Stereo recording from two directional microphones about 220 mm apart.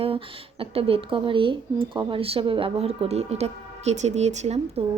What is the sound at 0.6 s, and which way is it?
A child's voice, 25° right (ahead or behind).